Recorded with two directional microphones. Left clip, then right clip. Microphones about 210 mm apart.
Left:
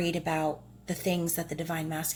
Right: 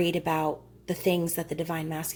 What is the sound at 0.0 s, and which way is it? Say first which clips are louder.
A woman's voice: right 3 dB; 25° right (ahead or behind).